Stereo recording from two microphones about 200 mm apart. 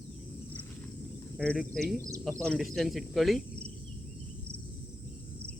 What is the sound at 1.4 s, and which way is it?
Speech, 5° left (ahead or behind).